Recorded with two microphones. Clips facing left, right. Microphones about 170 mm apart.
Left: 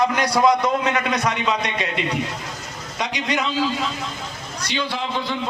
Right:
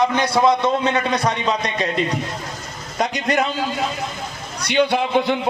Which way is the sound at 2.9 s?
50° right (ahead or behind).